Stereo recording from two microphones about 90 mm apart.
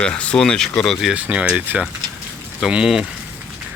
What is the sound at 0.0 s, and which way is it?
Speech, 10° left (ahead or behind).